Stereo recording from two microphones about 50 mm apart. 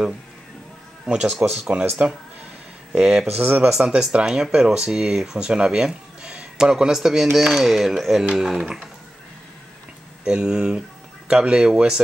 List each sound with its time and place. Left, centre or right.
1.0 s speech: centre
3.0 s speech: centre
3.3 s speech: right; by 8.6 s centre
10.2 s speech: centre